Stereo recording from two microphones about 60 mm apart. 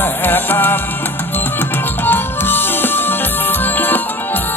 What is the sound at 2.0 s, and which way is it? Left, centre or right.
Music, left.